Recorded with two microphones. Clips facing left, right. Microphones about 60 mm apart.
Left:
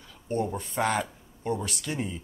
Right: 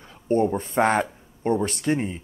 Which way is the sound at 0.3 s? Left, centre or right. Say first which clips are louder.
Right 8 dB; right.